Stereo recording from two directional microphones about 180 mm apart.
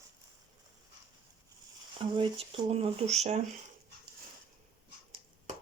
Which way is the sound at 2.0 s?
30° right (ahead or behind).